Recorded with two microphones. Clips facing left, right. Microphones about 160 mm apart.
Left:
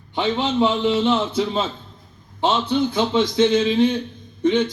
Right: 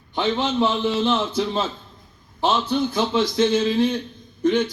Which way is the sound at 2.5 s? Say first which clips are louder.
Left 1 dB; 20° left (ahead or behind).